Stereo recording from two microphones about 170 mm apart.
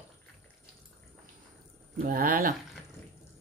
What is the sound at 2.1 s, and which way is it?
Speech, 60° right (ahead or behind).